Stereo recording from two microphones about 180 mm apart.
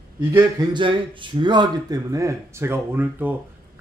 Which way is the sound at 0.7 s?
25° right (ahead or behind).